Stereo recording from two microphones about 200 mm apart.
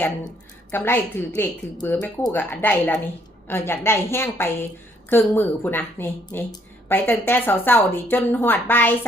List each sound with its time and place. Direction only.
0.7 s speech: 10° left (ahead or behind)